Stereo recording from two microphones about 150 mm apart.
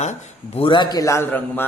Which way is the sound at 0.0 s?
50° left (ahead or behind).